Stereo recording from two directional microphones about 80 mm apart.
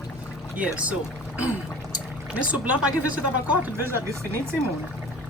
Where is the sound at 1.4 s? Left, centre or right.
Centre.